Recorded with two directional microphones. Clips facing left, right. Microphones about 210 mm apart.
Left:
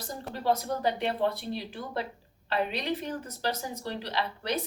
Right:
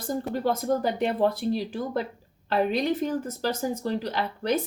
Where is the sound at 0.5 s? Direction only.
50° right (ahead or behind).